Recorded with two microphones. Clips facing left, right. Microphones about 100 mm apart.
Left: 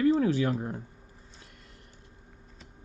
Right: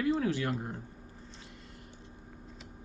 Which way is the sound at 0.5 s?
50° left (ahead or behind).